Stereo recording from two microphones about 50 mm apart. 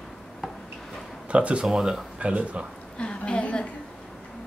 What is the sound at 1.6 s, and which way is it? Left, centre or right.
Speech, centre.